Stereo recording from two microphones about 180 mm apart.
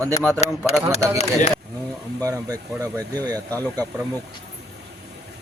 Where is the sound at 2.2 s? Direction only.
20° right (ahead or behind).